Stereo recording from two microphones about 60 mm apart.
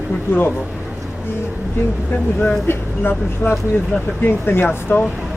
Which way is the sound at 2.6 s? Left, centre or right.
Left.